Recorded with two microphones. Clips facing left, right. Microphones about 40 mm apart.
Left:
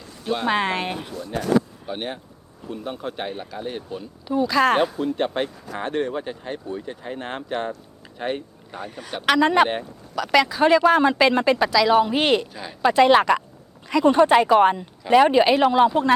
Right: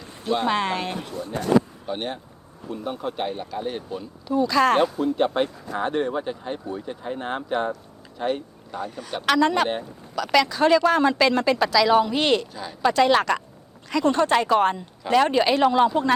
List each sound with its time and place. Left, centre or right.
0.4 s speech: centre
1.9 s speech: centre
8.8 s speech: centre
9.6 s speech: left
10.3 s speech: centre
11.5 s speech: centre